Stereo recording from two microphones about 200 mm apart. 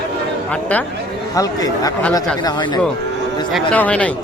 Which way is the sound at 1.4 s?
20° left (ahead or behind).